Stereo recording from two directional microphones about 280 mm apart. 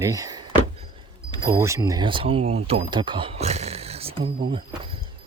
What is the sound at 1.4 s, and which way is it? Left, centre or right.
Speech, centre.